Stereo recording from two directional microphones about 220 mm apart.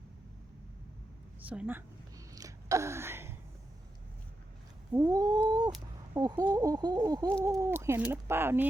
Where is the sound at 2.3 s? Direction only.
15° right (ahead or behind).